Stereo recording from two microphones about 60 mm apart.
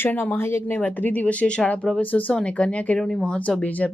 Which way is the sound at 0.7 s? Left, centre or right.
Left.